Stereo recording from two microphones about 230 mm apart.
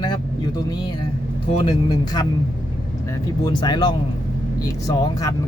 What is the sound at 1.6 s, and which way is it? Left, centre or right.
Speech, centre.